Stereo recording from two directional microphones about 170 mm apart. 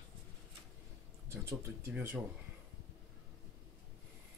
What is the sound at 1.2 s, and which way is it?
Speech, 15° right (ahead or behind).